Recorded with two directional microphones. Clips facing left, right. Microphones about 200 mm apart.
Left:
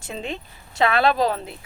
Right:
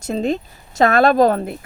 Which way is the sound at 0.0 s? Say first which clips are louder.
Right 11 dB; 40° right (ahead or behind).